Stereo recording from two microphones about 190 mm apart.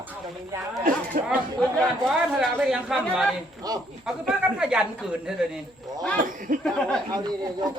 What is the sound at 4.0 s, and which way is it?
A man's voice, 5° right (ahead or behind).